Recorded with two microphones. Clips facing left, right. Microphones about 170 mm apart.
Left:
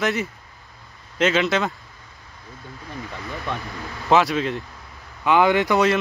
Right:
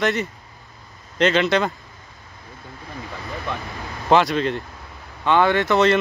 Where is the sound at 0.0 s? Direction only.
Centre (ahead or behind).